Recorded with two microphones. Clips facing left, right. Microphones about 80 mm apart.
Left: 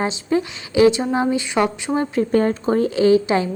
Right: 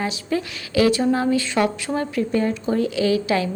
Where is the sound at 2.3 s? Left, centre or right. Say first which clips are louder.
Left 5 dB; left.